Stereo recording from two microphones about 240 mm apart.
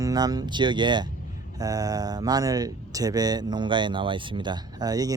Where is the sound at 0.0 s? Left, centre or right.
Centre.